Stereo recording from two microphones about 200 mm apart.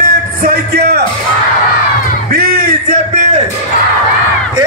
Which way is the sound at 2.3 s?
50° right (ahead or behind).